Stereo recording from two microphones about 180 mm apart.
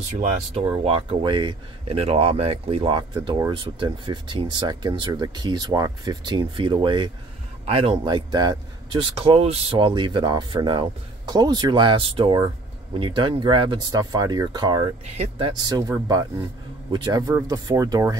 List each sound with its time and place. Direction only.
0.2 s speech: 40° right (ahead or behind); by 18.1 s 20° right (ahead or behind)